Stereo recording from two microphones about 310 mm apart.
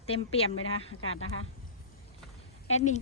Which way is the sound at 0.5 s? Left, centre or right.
Left.